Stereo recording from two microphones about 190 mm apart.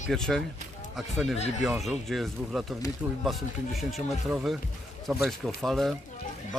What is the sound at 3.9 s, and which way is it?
Speech, centre (ahead or behind).